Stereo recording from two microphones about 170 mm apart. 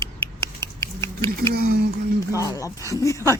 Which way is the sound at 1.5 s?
65° right (ahead or behind).